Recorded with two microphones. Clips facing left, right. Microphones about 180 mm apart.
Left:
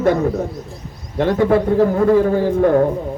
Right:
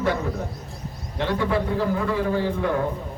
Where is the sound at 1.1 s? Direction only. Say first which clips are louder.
Left 9 dB; 45° left (ahead or behind).